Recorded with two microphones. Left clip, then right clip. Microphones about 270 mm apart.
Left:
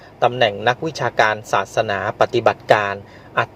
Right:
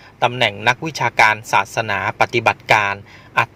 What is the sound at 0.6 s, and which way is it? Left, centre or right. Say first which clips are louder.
A man's voice: right 1 dB; right.